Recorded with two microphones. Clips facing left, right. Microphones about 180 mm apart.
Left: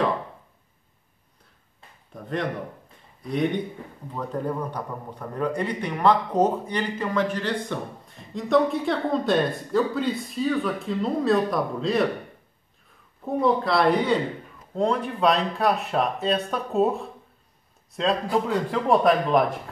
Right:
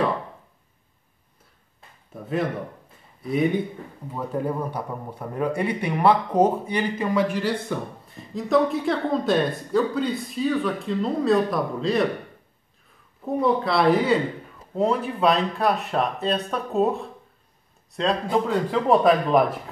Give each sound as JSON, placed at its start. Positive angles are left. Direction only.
{"t": 2.1, "sound": "a man's voice", "side_deg": -5}
{"t": 13.2, "sound": "a man's voice", "side_deg": 0}